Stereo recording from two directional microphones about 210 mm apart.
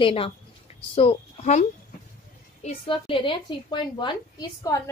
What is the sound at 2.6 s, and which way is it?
A woman's voice, 25° left (ahead or behind).